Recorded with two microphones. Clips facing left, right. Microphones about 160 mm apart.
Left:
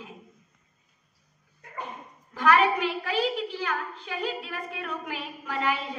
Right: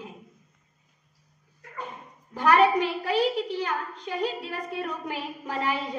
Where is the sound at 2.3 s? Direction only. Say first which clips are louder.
Right 2 dB; 35° right (ahead or behind).